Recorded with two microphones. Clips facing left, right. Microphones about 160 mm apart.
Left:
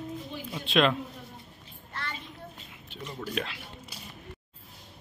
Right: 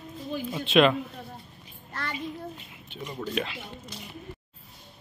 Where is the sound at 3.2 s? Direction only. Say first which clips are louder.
Right 3 dB; centre (ahead or behind).